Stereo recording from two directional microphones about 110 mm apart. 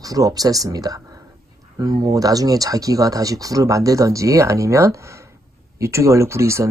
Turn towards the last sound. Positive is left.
turn(degrees=-25)  # may be behind; listen again after turning